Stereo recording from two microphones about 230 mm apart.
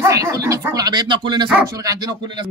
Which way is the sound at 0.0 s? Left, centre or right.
Centre.